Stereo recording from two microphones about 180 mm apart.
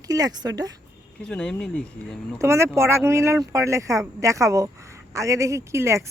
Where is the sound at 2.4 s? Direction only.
15° right (ahead or behind).